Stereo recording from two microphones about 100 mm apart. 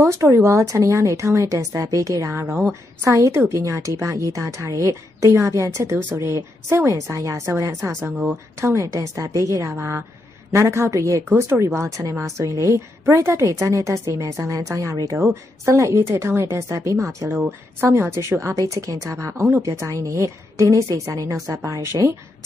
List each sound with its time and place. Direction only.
0.0 s a woman's voice: 30° right (ahead or behind)
17.3 s a woman's voice: 20° right (ahead or behind)